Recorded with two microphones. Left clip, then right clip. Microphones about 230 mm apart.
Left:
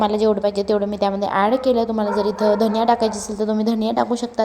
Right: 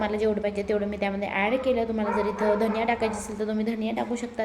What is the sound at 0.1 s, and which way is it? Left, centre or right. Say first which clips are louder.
A woman's voice: left 8 dB; left.